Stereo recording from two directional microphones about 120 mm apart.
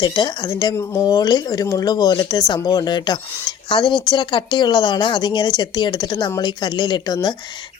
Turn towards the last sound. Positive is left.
turn(degrees=35)  # may be behind; listen again after turning